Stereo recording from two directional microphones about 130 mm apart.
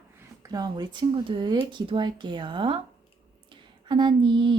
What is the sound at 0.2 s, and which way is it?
Speech, 30° right (ahead or behind).